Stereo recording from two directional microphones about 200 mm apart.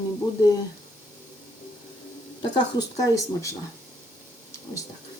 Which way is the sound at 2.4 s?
20° left (ahead or behind).